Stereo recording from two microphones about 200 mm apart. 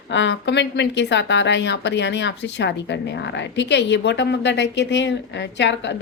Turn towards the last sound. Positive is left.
turn(degrees=60)  # may be behind; listen again after turning